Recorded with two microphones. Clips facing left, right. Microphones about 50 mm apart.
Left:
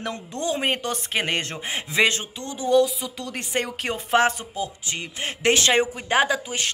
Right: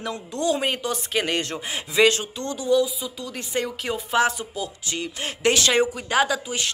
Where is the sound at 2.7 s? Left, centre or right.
Left.